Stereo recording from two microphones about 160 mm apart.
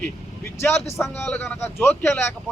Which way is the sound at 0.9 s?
15° left (ahead or behind).